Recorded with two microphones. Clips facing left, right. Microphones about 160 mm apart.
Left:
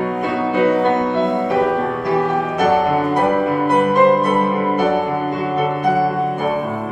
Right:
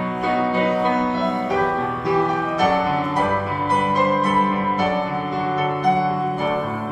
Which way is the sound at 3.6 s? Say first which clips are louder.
Left 6 dB; 55° left (ahead or behind).